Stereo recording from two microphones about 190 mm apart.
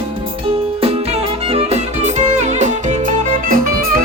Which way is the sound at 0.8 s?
30° right (ahead or behind).